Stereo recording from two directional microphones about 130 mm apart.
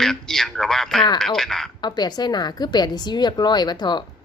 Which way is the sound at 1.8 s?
35° left (ahead or behind).